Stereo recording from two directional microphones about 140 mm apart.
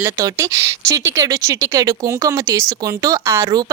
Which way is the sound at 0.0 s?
20° right (ahead or behind).